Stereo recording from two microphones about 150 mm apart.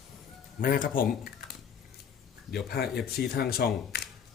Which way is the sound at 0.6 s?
70° left (ahead or behind).